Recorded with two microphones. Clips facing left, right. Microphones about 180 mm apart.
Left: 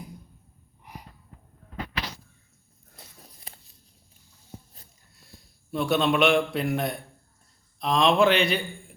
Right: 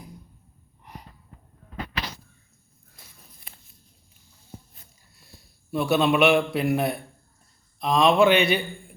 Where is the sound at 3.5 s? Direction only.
35° left (ahead or behind).